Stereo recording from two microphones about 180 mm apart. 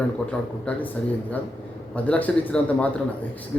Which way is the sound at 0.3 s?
5° left (ahead or behind).